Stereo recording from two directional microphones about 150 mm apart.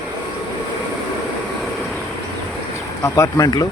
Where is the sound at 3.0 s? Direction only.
20° left (ahead or behind).